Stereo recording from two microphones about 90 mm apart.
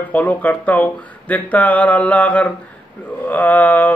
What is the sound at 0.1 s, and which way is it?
A man's voice, 20° left (ahead or behind).